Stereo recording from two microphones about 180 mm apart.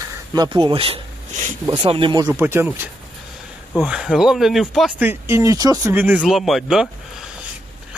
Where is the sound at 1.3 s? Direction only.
45° right (ahead or behind).